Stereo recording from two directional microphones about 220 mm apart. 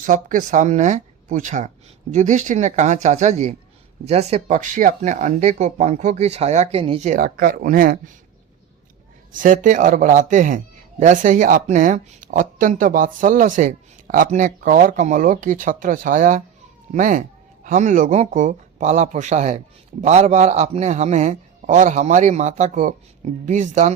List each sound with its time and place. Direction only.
0.0 s speech: 35° right (ahead or behind)
9.3 s speech: 35° right (ahead or behind)